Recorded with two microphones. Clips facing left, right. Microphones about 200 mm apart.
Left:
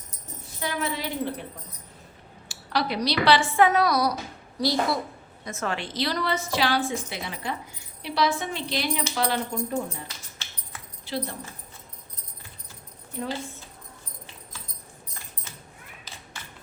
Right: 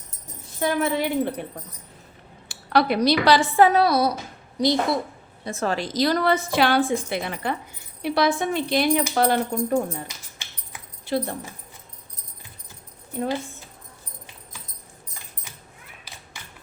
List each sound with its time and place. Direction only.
0.6 s a woman's voice: 55° right (ahead or behind)
2.5 s a woman's voice: 55° right (ahead or behind); by 4.9 s 20° right (ahead or behind)
5.5 s a woman's voice: 35° right (ahead or behind); by 10.0 s 50° right (ahead or behind)
10.4 s a sound: 10° right (ahead or behind)
11.0 s speech: 50° right (ahead or behind)